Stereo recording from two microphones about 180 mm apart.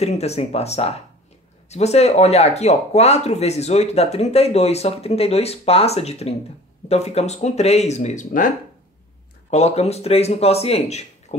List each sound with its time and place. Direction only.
0.0 s speech: 35° left (ahead or behind)
9.5 s speech: 35° left (ahead or behind)